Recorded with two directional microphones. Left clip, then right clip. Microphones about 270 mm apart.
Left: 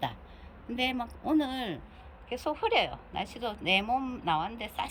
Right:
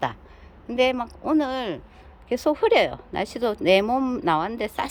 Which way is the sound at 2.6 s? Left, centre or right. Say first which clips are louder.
Right 7 dB; right.